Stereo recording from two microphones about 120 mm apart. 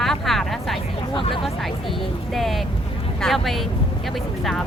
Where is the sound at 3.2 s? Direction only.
Centre (ahead or behind).